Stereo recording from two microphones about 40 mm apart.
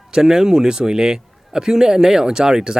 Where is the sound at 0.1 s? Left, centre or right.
Centre.